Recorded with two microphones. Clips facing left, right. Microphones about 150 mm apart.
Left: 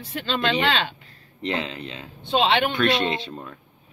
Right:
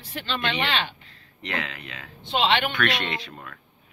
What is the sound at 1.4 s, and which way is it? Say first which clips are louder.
Speech: left 5 dB; 30° left (ahead or behind).